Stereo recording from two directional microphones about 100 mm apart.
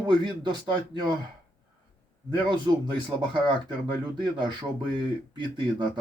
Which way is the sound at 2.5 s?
50° right (ahead or behind).